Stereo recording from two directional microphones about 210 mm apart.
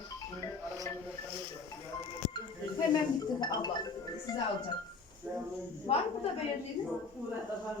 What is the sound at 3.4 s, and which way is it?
Music, 20° left (ahead or behind).